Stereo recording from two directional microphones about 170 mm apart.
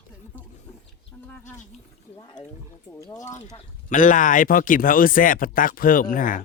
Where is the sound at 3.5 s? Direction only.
50° left (ahead or behind).